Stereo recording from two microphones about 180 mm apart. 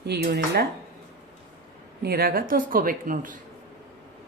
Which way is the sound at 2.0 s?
55° right (ahead or behind).